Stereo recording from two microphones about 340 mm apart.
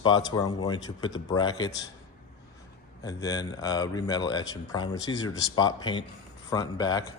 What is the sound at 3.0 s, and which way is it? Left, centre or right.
Speech, centre.